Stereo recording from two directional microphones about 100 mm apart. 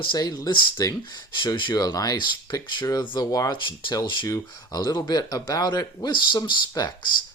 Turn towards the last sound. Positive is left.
turn(degrees=45)  # may be behind; listen again after turning